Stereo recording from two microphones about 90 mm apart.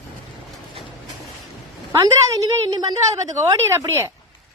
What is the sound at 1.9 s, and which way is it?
A woman's voice, 45° right (ahead or behind).